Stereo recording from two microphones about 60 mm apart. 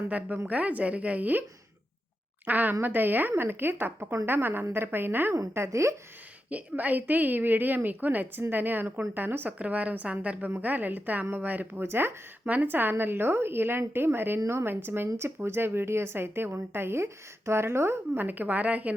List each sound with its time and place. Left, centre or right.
0.1 s a woman's voice: right
2.5 s a woman's voice: right
5.5 s speech: right
6.5 s a woman's voice: right
11.8 s a woman's voice: right